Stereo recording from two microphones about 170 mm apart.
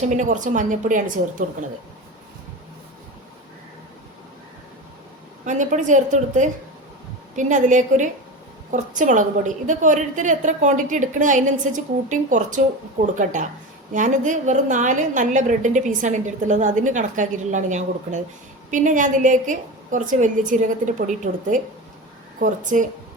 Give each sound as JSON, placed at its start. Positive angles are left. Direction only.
{"t": 0.0, "sound": "a woman's voice", "side_deg": -45}
{"t": 5.5, "sound": "a woman's voice", "side_deg": -45}